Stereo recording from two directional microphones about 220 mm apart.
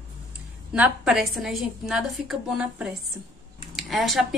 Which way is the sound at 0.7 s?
5° right (ahead or behind).